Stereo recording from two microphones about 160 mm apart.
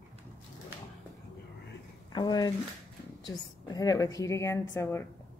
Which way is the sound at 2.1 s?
25° left (ahead or behind).